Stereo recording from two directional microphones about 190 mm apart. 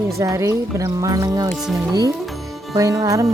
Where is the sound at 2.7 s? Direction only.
20° right (ahead or behind).